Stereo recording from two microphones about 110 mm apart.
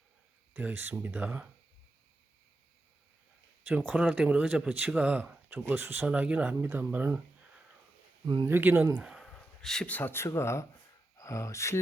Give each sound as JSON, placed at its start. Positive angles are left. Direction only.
{"t": 0.5, "sound": "speech", "side_deg": -15}
{"t": 3.6, "sound": "speech", "side_deg": -15}
{"t": 8.4, "sound": "speech", "side_deg": -20}
{"t": 9.0, "sound": "speech", "side_deg": -5}
{"t": 9.2, "sound": "speech", "side_deg": 5}